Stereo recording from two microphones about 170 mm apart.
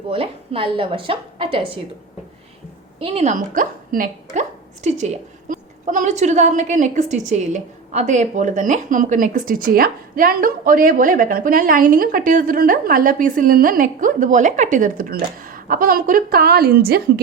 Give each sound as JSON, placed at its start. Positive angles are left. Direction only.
{"t": 0.1, "sound": "a woman's voice", "side_deg": -35}
{"t": 3.0, "sound": "a woman's voice", "side_deg": -40}